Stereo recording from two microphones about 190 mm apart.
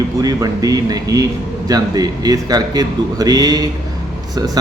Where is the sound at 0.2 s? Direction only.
20° right (ahead or behind).